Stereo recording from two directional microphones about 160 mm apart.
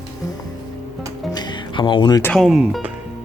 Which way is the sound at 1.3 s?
25° left (ahead or behind).